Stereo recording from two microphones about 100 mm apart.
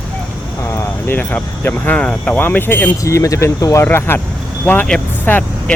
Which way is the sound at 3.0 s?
35° left (ahead or behind).